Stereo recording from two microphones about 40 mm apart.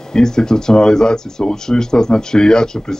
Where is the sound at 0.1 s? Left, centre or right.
Centre.